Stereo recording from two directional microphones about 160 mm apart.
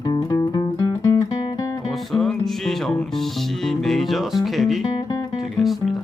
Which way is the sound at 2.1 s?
Centre (ahead or behind).